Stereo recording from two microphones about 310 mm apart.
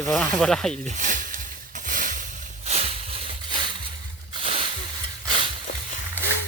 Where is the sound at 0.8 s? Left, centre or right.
Right.